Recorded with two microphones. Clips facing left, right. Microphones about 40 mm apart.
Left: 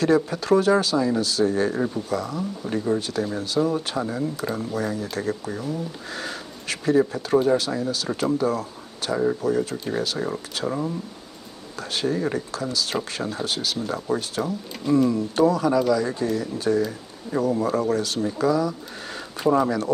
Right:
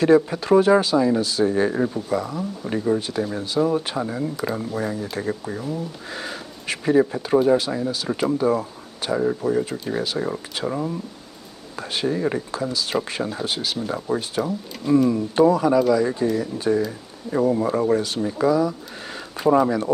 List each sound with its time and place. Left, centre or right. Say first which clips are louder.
0.0 s speech: right 4 dB; centre